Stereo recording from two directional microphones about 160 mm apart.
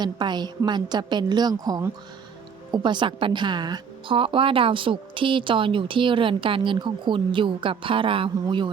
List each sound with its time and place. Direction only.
0.0 s a woman's voice: 25° right (ahead or behind)